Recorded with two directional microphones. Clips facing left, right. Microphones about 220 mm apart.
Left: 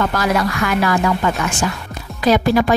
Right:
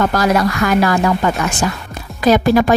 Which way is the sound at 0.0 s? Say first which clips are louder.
Right 3 dB; 40° right (ahead or behind).